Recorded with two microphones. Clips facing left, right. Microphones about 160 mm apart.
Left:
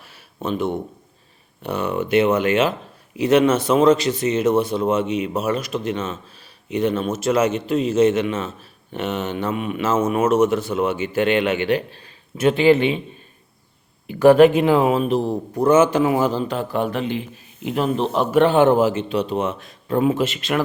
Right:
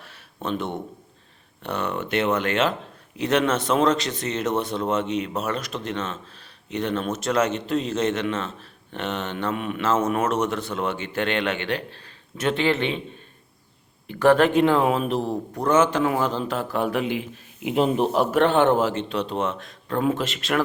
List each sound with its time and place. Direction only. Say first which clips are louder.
0.0 s a sound: left 3 dB; 5° left (ahead or behind)
1.6 s a man's voice: left 4 dB; 5° left (ahead or behind)
14.1 s a man's voice: left 6 dB; 10° left (ahead or behind); by 18.0 s 15° right (ahead or behind)
18.0 s a man's voice: left 3 dB; 5° right (ahead or behind)